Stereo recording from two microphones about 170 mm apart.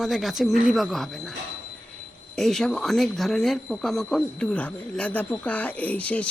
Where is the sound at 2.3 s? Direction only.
Centre (ahead or behind).